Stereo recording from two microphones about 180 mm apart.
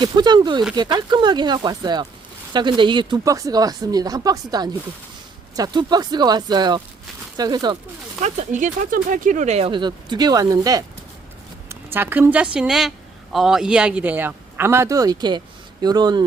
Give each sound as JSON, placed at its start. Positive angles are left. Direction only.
{"t": 0.0, "sound": "speech", "side_deg": -25}
{"t": 8.2, "sound": "a woman's voice", "side_deg": -40}